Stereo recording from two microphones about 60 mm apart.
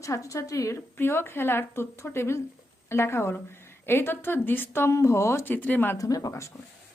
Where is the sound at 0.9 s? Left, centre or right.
Left.